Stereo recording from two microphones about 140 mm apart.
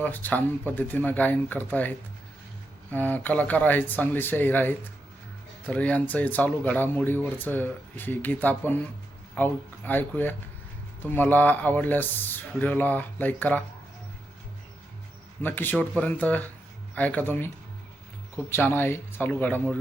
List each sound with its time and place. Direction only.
0.0 s speech: 10° left (ahead or behind)
15.4 s speech: 15° left (ahead or behind)
18.5 s speech: 15° left (ahead or behind)